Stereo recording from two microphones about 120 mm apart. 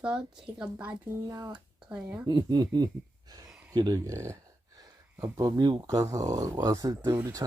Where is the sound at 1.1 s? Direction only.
30° right (ahead or behind).